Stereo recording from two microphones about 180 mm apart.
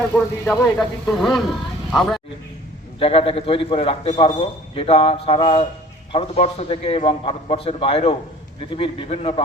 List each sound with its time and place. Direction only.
0.1 s speech: 15° left (ahead or behind)
0.8 s speech: centre (ahead or behind)
3.0 s a man's voice: 30° left (ahead or behind)